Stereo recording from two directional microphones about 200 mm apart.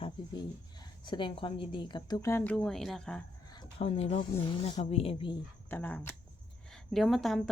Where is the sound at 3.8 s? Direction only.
30° left (ahead or behind).